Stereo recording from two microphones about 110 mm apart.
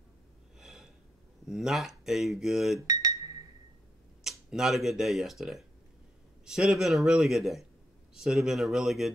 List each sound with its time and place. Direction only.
0.6 s snort: 5° right (ahead or behind)
1.5 s speech: 5° right (ahead or behind)
2.9 s a sound: 30° right (ahead or behind)
4.2 s speech: 5° right (ahead or behind)